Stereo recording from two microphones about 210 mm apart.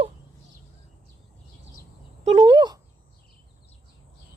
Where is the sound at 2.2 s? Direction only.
25° right (ahead or behind).